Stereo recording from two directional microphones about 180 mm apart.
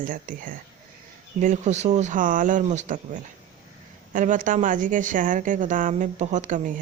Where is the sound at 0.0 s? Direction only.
50° right (ahead or behind).